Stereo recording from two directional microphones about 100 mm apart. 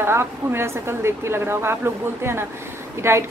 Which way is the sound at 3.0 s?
25° right (ahead or behind).